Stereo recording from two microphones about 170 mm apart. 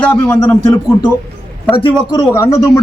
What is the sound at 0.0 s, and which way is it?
Speech, 10° left (ahead or behind).